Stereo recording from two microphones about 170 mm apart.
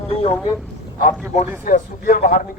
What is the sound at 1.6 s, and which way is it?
Speech, 50° left (ahead or behind).